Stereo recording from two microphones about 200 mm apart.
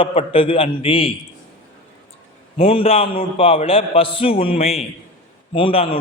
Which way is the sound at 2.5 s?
30° left (ahead or behind).